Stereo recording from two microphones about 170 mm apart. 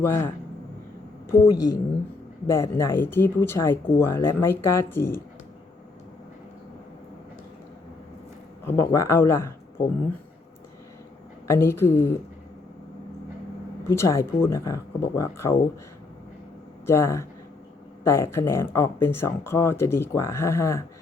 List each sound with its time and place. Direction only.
0.0 s speech: 15° left (ahead or behind)
1.3 s a woman's voice: 20° left (ahead or behind)
8.6 s speech: 15° left (ahead or behind)
11.4 s speech: 15° left (ahead or behind)
13.8 s speech: 15° left (ahead or behind)
16.8 s speech: 15° left (ahead or behind)